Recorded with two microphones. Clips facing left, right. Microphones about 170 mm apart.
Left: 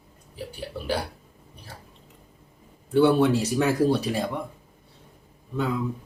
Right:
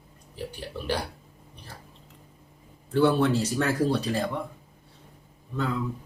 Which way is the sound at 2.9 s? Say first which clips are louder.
Left 3 dB; 10° left (ahead or behind).